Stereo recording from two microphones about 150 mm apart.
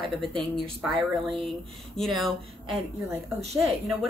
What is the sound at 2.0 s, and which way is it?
Speech, centre (ahead or behind).